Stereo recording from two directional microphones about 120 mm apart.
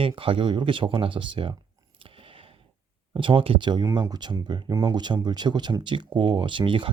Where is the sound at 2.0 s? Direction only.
50° right (ahead or behind).